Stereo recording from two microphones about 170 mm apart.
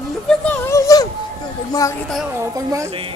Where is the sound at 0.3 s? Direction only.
15° left (ahead or behind).